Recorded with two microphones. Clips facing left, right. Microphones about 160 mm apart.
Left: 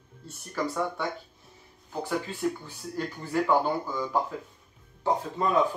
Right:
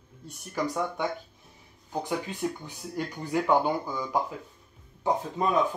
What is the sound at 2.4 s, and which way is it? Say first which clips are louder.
Speech: left 2 dB; 20° right (ahead or behind).